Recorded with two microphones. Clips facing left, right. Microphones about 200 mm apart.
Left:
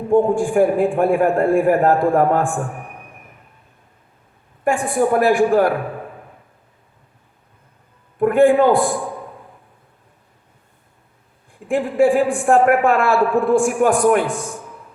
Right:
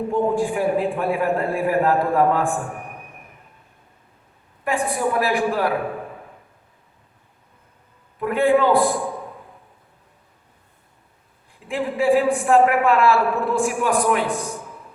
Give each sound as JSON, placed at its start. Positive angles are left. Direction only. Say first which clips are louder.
{"t": 0.1, "sound": "a man's voice", "louder": "left 7 dB", "side_deg": 50}
{"t": 4.6, "sound": "a man's voice", "louder": "left 5 dB", "side_deg": 50}
{"t": 8.2, "sound": "a man's voice", "louder": "left 5 dB", "side_deg": 50}
{"t": 11.7, "sound": "a man's voice", "louder": "left 3 dB", "side_deg": 50}